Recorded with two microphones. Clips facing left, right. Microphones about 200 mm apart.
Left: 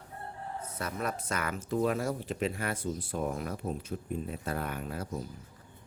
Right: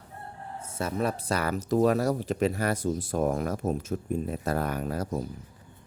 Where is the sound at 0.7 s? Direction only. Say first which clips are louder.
Right 7 dB; 25° right (ahead or behind).